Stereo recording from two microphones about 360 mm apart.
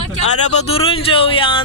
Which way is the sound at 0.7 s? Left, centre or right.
Centre.